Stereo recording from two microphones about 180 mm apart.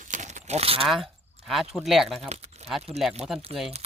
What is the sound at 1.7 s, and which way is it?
Speech, centre (ahead or behind).